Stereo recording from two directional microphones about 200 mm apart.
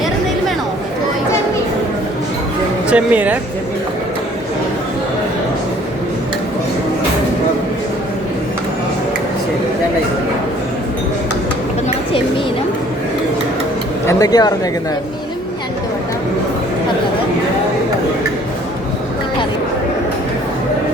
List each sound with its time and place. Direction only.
2.9 s speech: 5° right (ahead or behind)
14.1 s speech: 20° left (ahead or behind)